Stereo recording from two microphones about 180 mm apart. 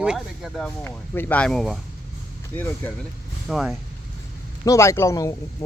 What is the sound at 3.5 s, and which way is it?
Speech, centre (ahead or behind).